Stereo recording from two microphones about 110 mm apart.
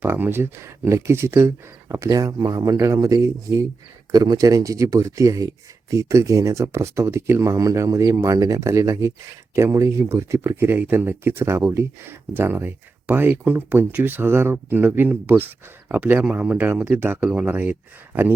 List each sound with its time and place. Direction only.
0.0 s speech: 20° right (ahead or behind)